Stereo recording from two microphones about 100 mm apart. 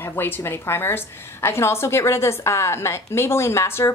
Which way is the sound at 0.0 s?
20° left (ahead or behind).